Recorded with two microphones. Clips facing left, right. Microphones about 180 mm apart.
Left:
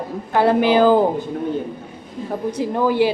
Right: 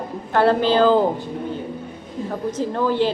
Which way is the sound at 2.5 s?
15° left (ahead or behind).